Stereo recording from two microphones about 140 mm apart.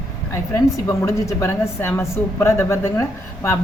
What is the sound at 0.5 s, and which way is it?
A woman's voice, 20° left (ahead or behind).